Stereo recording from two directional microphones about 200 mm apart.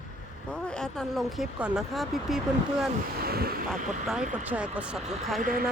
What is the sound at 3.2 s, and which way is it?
Speech, 50° right (ahead or behind).